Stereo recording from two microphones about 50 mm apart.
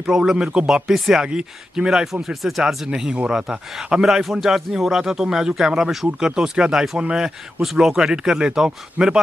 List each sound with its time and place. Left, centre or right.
0.0 s speech: centre
2.6 s speech: centre